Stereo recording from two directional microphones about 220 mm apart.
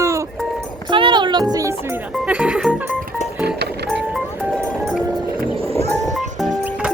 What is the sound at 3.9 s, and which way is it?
Music, centre (ahead or behind).